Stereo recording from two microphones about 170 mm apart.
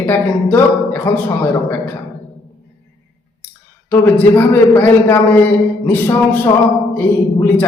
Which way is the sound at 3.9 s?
10° left (ahead or behind).